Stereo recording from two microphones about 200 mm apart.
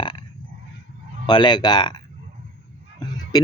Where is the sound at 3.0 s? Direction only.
20° left (ahead or behind).